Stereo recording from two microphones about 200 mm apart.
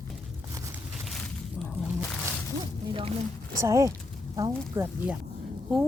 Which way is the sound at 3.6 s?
15° right (ahead or behind).